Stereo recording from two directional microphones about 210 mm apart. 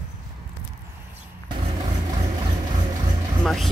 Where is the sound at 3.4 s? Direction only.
Centre (ahead or behind).